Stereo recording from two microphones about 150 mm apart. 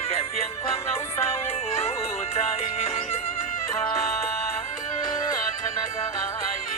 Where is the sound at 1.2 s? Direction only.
40° left (ahead or behind).